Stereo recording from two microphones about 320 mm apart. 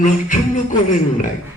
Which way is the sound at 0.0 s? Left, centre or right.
Left.